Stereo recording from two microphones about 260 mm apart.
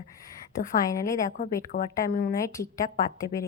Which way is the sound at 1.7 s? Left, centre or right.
Left.